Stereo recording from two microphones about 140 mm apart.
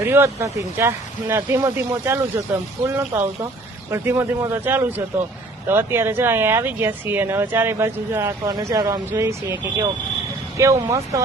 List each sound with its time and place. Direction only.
0.0 s speech: 15° right (ahead or behind)
10.6 s speech: 20° right (ahead or behind)